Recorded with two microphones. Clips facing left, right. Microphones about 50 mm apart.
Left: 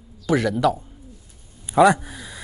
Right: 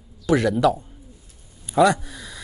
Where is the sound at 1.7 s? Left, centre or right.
Centre.